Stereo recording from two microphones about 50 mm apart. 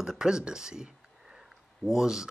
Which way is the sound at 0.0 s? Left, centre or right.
Centre.